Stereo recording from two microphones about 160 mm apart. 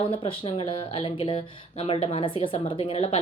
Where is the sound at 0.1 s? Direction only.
35° left (ahead or behind).